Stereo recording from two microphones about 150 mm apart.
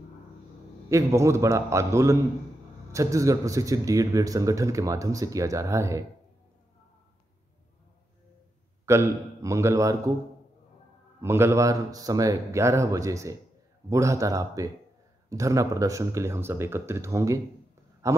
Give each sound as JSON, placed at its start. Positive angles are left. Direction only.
{"t": 0.8, "sound": "speech", "side_deg": -20}
{"t": 8.8, "sound": "speech", "side_deg": -20}
{"t": 11.1, "sound": "a man's voice", "side_deg": -15}